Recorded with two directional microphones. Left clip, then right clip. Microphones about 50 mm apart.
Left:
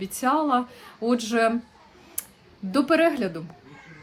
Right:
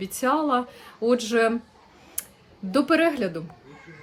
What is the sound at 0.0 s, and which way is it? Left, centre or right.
Speech, right.